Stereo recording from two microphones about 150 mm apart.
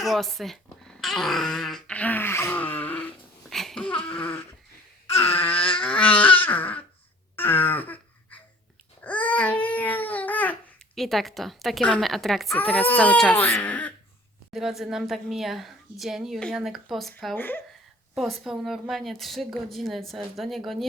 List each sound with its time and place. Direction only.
0.0 s speech: centre (ahead or behind)
3.9 s a sound: 35° left (ahead or behind)
5.1 s speech: 15° left (ahead or behind)
5.5 s a sound: 35° left (ahead or behind)
5.8 s a sound: 10° left (ahead or behind)
9.0 s babbling: 10° left (ahead or behind)
12.5 s speech: 10° left (ahead or behind)
14.5 s a woman's voice: centre (ahead or behind)
17.3 s speech: 15° left (ahead or behind)
18.1 s a woman's voice: centre (ahead or behind)